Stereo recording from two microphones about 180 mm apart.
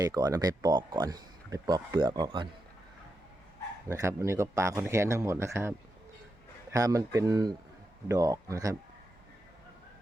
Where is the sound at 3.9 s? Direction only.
15° right (ahead or behind).